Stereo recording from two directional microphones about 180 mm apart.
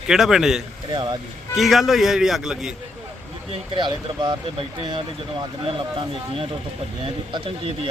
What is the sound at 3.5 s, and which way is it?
Speech, 30° right (ahead or behind).